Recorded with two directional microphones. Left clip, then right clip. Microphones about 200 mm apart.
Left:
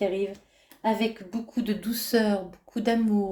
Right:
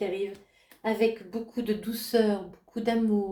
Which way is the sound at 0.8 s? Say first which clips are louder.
Even; 40° left (ahead or behind).